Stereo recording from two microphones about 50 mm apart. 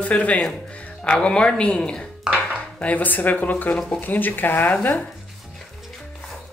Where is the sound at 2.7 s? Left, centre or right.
Left.